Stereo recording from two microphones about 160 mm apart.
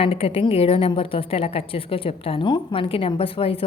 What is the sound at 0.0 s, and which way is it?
A woman's voice, 35° left (ahead or behind).